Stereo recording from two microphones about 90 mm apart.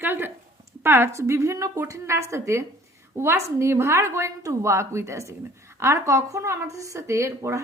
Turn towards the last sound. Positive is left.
turn(degrees=-30)  # may be behind; listen again after turning